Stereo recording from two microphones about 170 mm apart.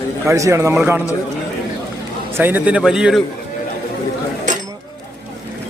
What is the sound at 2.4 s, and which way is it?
Speech, 10° right (ahead or behind).